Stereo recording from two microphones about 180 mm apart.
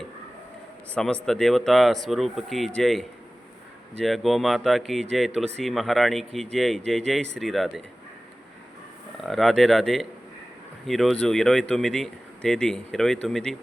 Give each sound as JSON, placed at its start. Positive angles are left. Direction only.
{"t": 0.9, "sound": "speech", "side_deg": 5}
{"t": 9.2, "sound": "speech", "side_deg": 0}